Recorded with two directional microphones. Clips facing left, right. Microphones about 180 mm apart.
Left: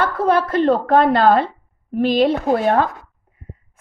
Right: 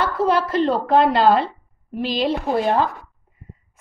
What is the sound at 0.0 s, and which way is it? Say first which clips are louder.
A woman's voice: left 2 dB; 50° left (ahead or behind).